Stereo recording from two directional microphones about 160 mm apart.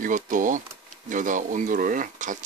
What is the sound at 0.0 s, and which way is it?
Speech, 55° right (ahead or behind).